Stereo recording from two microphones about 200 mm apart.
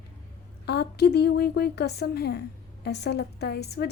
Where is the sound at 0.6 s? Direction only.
55° left (ahead or behind).